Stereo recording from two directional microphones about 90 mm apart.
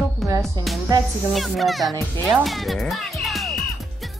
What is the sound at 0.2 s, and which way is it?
Music, centre (ahead or behind).